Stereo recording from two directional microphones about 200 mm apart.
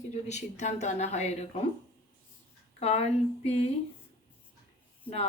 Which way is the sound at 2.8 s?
30° left (ahead or behind).